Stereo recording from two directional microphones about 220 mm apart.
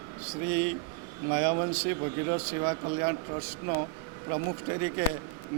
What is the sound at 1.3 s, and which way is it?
A man's voice, 25° right (ahead or behind).